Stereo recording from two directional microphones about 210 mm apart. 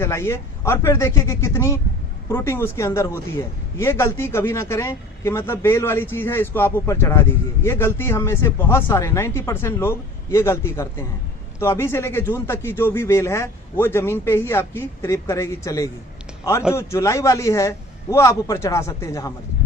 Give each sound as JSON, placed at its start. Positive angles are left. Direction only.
{"t": 0.0, "sound": "speech", "side_deg": 10}